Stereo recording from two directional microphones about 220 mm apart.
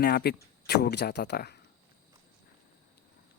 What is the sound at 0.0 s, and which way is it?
Speech, 45° left (ahead or behind).